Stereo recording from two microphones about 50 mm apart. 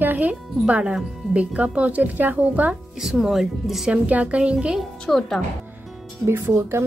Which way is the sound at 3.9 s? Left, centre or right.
Right.